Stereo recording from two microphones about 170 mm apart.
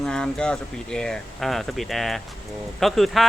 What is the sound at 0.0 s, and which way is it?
Speech, 5° left (ahead or behind).